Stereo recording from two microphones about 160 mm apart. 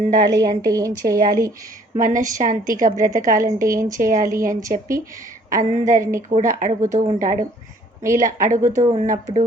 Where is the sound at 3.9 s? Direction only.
55° right (ahead or behind).